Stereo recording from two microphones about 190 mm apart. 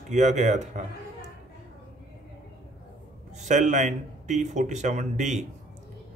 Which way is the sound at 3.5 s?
40° right (ahead or behind).